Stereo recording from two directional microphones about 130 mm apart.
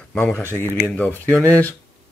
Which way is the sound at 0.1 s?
10° left (ahead or behind).